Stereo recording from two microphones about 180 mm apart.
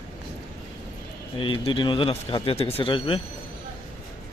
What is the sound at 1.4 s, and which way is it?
Speech, 30° left (ahead or behind).